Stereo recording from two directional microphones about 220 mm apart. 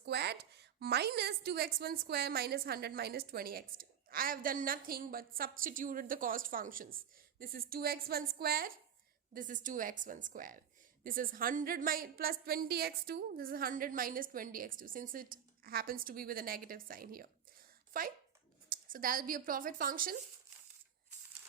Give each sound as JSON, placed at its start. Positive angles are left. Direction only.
{"t": 0.0, "sound": "a woman's voice", "side_deg": -50}